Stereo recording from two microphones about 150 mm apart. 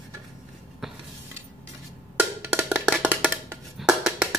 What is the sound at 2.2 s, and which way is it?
Music, 15° right (ahead or behind).